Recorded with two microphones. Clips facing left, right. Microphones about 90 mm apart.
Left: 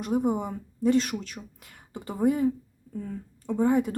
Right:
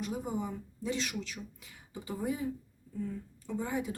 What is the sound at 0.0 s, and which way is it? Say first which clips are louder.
Speech: left 9 dB; 55° left (ahead or behind).